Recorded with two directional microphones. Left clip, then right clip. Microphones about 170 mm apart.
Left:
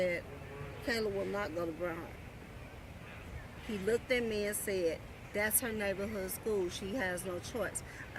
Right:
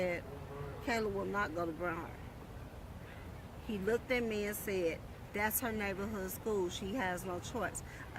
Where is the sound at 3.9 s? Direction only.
15° right (ahead or behind).